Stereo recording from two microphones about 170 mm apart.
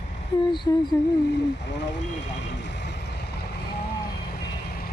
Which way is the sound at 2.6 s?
90° left.